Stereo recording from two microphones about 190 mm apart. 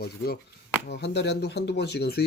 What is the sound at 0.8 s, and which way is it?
Speech, 65° left (ahead or behind).